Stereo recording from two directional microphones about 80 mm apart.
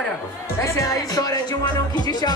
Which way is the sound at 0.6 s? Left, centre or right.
Left.